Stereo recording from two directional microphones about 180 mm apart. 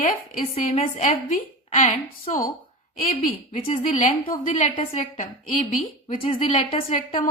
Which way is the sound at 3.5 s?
30° left (ahead or behind).